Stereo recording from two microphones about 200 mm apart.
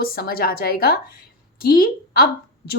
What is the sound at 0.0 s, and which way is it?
A woman's voice, 50° left (ahead or behind).